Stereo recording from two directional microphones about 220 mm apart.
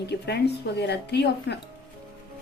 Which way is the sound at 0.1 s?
50° left (ahead or behind).